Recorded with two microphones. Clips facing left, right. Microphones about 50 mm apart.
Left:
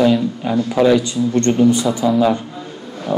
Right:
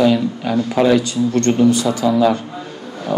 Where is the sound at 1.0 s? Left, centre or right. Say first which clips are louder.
Even; left.